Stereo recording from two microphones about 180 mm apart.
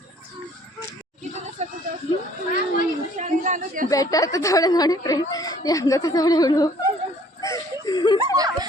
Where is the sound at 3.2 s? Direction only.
45° right (ahead or behind).